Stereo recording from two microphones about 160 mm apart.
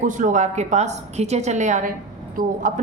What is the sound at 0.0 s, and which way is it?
A woman's voice, 55° right (ahead or behind).